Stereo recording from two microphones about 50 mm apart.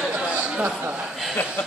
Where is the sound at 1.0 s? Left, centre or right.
Centre.